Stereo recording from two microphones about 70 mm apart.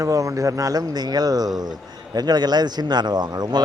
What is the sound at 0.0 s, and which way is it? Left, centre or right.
A man's voice, right.